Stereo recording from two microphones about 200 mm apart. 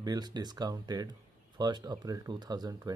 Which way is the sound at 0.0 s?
20° right (ahead or behind).